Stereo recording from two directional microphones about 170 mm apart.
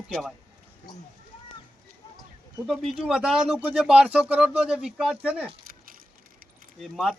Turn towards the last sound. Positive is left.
turn(degrees=0)  # may be behind; listen again after turning